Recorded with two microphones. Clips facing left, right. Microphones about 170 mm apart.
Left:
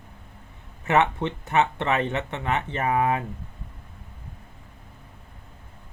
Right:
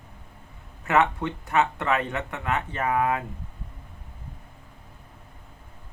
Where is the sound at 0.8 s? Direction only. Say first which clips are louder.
Left 1 dB; 25° left (ahead or behind).